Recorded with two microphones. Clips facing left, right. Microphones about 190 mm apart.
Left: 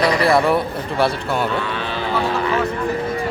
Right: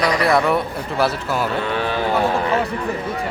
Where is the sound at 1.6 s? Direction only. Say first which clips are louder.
Right 4 dB; 50° right (ahead or behind).